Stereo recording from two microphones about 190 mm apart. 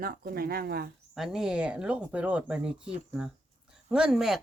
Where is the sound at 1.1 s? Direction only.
Centre (ahead or behind).